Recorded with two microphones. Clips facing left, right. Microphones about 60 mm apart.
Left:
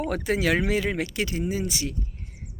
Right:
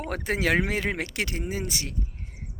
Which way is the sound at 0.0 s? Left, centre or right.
Right.